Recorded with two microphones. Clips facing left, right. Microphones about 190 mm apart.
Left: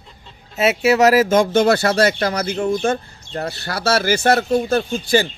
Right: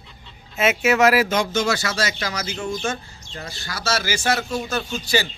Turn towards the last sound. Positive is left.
turn(degrees=50)  # may be behind; listen again after turning